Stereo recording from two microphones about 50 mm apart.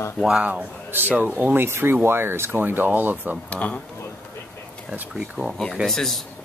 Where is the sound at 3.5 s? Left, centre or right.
Left.